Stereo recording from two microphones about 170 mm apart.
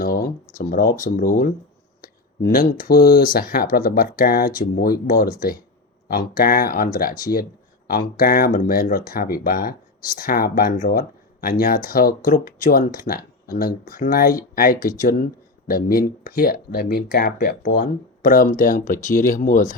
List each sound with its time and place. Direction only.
0.0 s a sound: 60° left (ahead or behind)
0.5 s speech: 55° left (ahead or behind)
2.5 s speech: 60° left (ahead or behind)